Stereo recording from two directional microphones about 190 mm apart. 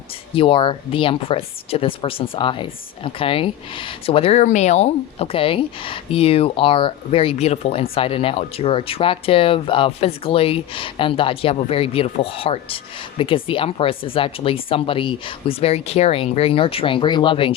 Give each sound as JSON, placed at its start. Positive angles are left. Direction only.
{"t": 0.3, "sound": "speech", "side_deg": 25}